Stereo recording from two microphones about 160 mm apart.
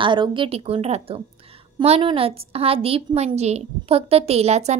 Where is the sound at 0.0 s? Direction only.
30° right (ahead or behind).